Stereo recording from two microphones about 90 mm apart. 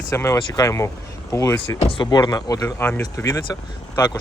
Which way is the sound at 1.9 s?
60° left (ahead or behind).